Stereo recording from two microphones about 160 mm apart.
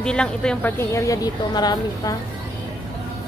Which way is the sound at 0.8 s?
15° left (ahead or behind).